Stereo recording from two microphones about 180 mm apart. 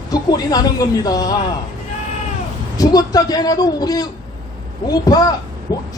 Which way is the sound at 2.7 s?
20° left (ahead or behind).